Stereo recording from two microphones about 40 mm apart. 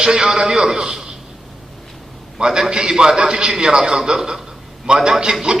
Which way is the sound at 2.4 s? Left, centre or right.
Centre.